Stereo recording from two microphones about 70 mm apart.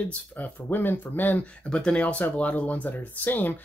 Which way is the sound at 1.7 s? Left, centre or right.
Centre.